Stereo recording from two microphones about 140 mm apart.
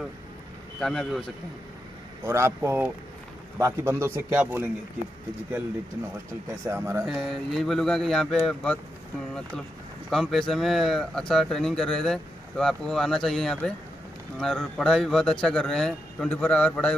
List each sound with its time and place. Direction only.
0.7 s speech: centre (ahead or behind)
2.2 s a man's voice: 15° right (ahead or behind)
6.6 s a man's voice: 15° right (ahead or behind)
7.2 s speech: centre (ahead or behind)
10.0 s speech: 5° right (ahead or behind)